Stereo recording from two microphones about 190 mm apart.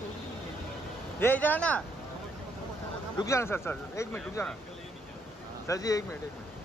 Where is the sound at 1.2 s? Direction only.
10° left (ahead or behind).